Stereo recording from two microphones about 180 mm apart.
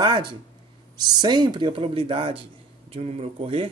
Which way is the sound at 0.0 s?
25° right (ahead or behind).